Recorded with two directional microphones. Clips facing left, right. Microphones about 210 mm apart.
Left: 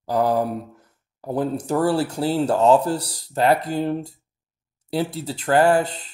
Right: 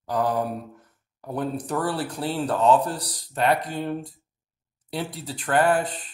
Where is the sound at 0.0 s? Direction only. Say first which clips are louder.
Left 4 dB; 30° left (ahead or behind).